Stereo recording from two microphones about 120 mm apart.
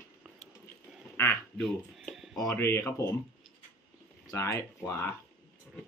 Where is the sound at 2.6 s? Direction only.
20° left (ahead or behind).